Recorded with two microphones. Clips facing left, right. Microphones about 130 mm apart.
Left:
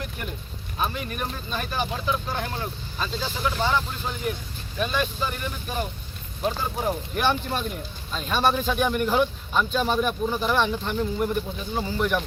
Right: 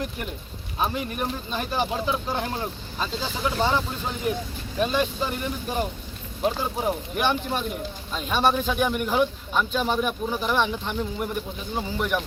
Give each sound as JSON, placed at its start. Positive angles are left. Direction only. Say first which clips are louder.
{"t": 0.8, "sound": "speech", "louder": "right 2 dB", "side_deg": -20}
{"t": 6.4, "sound": "speech", "louder": "right 1 dB", "side_deg": -15}